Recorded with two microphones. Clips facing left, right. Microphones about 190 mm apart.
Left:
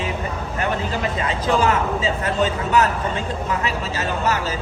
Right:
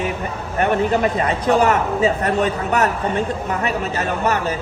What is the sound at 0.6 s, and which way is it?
Speech, 60° right (ahead or behind).